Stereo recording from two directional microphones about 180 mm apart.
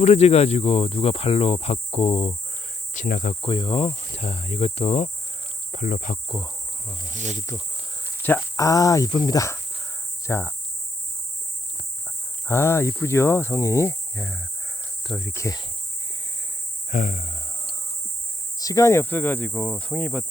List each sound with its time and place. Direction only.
0.0 s speech: 35° left (ahead or behind)
2.9 s speech: 45° left (ahead or behind)
3.4 s speech: 30° left (ahead or behind)
5.7 s speech: 50° left (ahead or behind)
6.2 s insect: 20° left (ahead or behind)
7.1 s speech: 45° right (ahead or behind)
8.5 s speech: 20° left (ahead or behind)
12.5 s speech: 15° left (ahead or behind)
16.9 s a sound: 40° left (ahead or behind)
18.6 s speech: 15° left (ahead or behind)